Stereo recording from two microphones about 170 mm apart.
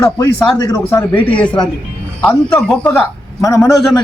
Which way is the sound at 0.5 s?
25° left (ahead or behind).